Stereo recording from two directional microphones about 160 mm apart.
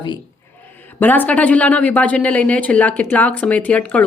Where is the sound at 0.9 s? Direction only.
10° left (ahead or behind).